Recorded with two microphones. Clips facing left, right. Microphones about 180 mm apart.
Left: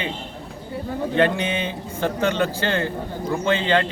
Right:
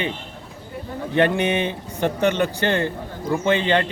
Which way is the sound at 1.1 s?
20° right (ahead or behind).